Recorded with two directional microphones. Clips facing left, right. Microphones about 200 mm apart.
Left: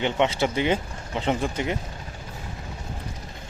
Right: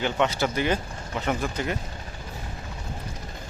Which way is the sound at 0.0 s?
20° left (ahead or behind).